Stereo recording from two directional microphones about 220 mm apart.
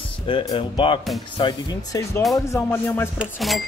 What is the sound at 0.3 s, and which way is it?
Speech, 20° left (ahead or behind).